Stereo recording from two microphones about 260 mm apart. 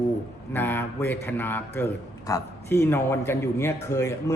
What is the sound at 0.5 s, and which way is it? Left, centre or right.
A man's voice, centre.